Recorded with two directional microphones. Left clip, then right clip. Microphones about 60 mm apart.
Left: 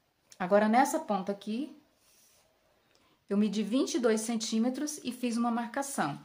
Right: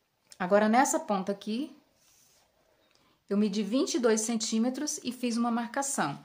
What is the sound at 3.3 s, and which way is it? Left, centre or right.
Speech, centre.